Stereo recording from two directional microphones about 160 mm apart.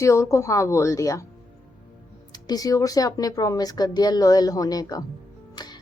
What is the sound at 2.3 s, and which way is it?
Speech, 25° left (ahead or behind).